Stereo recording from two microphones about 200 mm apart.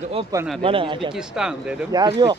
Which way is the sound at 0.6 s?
25° right (ahead or behind).